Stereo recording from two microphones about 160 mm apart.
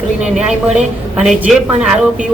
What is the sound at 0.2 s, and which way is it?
A woman's voice, 5° right (ahead or behind).